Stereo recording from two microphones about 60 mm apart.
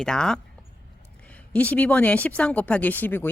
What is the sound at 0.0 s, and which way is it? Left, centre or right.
Speech, centre.